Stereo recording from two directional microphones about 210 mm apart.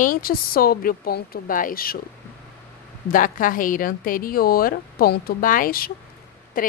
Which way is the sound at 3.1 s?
40° left (ahead or behind).